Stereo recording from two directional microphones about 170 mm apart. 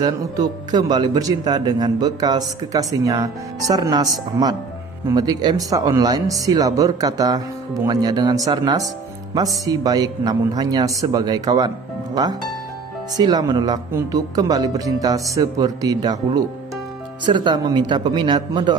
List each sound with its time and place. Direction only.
0.0 s a man's voice: 25° right (ahead or behind)
13.2 s a man's voice: 25° right (ahead or behind)